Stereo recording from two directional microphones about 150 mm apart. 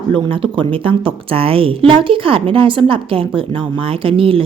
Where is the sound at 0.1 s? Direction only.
35° right (ahead or behind).